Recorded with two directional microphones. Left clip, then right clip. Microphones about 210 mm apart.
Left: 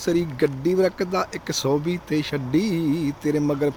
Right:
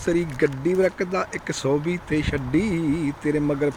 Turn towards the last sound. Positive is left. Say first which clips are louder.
# even
turn(degrees=15)  # may be behind; listen again after turning